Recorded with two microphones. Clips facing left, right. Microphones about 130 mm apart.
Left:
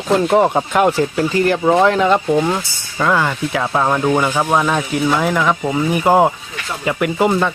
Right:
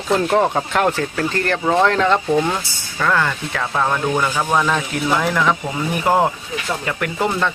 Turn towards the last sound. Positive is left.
turn(degrees=10)  # may be behind; listen again after turning